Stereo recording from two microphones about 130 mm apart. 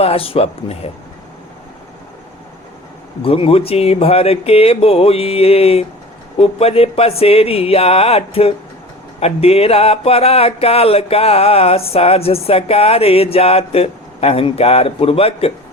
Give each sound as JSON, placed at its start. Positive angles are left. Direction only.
{"t": 0.0, "sound": "music", "side_deg": 50}
{"t": 3.2, "sound": "music", "side_deg": 45}